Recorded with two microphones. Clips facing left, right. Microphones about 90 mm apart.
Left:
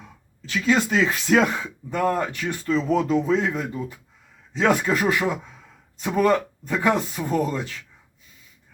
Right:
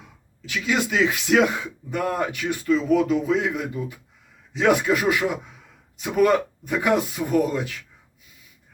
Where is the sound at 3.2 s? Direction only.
10° right (ahead or behind).